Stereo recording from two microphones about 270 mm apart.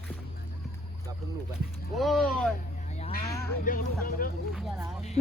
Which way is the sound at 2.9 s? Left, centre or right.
Left.